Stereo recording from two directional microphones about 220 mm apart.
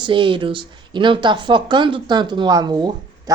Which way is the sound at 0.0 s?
20° right (ahead or behind).